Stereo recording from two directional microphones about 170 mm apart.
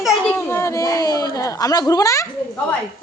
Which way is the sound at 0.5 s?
15° left (ahead or behind).